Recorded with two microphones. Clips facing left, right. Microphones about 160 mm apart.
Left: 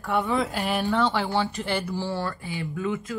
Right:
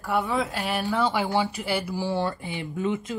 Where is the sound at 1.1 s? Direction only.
15° right (ahead or behind).